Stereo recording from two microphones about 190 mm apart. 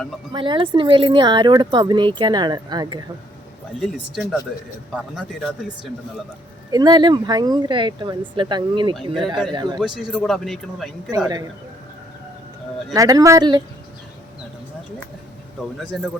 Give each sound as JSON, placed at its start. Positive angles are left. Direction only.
{"t": 0.3, "sound": "speech", "side_deg": -25}
{"t": 3.8, "sound": "speech", "side_deg": 0}
{"t": 6.7, "sound": "speech", "side_deg": -20}
{"t": 9.8, "sound": "speech", "side_deg": -5}
{"t": 12.9, "sound": "speech", "side_deg": -20}
{"t": 15.8, "sound": "speech", "side_deg": 0}